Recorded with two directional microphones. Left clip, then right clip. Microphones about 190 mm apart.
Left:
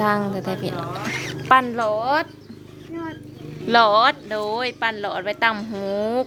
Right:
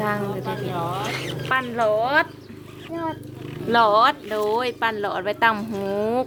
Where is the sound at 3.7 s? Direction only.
15° left (ahead or behind).